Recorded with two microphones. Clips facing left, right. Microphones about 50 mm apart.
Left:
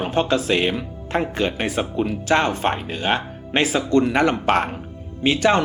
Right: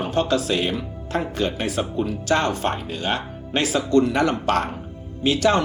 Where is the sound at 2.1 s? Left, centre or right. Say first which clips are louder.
Left 2 dB; left.